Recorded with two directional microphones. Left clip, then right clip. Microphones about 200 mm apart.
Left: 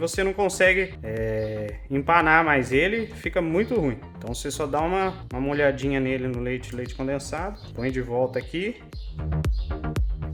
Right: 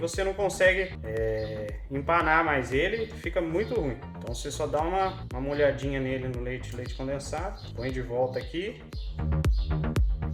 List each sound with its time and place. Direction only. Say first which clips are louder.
0.0 s speech: left 4 dB; 55° left (ahead or behind)